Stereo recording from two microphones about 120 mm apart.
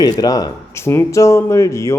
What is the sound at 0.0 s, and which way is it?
A woman's voice, 30° left (ahead or behind).